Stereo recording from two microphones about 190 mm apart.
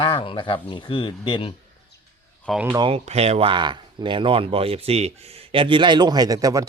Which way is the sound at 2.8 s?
30° right (ahead or behind).